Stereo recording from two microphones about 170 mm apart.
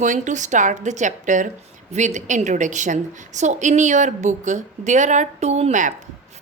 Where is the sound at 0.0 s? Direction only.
45° right (ahead or behind).